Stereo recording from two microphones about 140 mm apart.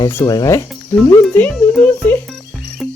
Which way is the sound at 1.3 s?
10° left (ahead or behind).